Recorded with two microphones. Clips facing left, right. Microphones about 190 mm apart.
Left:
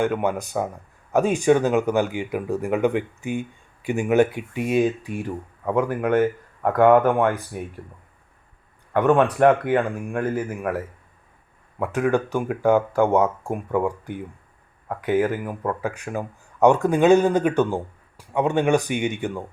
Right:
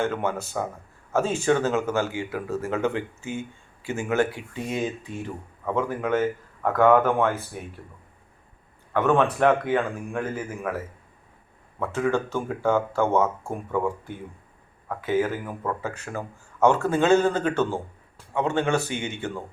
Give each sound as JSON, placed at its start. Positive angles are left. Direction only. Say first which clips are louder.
{"t": 0.0, "sound": "speech", "louder": "left 4 dB", "side_deg": 15}
{"t": 8.9, "sound": "speech", "louder": "left 3 dB", "side_deg": 15}
{"t": 11.8, "sound": "speech", "louder": "left 3 dB", "side_deg": 15}